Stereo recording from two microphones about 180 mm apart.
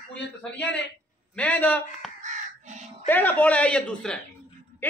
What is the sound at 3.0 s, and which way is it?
A man's voice, 10° left (ahead or behind).